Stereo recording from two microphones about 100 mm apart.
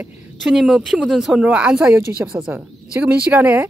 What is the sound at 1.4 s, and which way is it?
Speech, 10° right (ahead or behind).